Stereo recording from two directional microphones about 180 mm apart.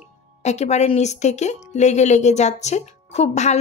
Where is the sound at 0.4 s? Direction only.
40° left (ahead or behind).